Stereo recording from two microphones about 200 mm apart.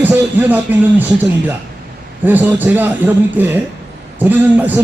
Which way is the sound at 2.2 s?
10° right (ahead or behind).